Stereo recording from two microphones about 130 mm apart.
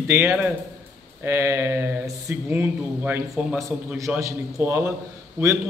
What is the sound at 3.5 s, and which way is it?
A man's voice, 25° right (ahead or behind).